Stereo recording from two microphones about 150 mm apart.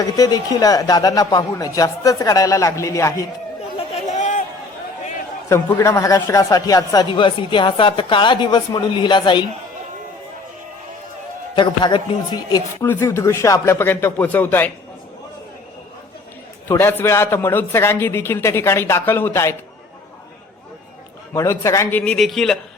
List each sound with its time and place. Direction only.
0.0 s speech: 25° left (ahead or behind)
3.9 s chatter: 50° left (ahead or behind)
5.5 s speech: 20° left (ahead or behind)
11.5 s a man's voice: 30° left (ahead or behind); by 14.7 s 10° left (ahead or behind)
16.6 s a man's voice: 15° left (ahead or behind)
21.3 s speech: 20° left (ahead or behind)
22.0 s a man's voice: 5° left (ahead or behind)